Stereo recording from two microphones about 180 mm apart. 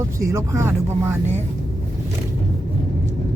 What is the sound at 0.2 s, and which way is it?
Speech, 15° right (ahead or behind).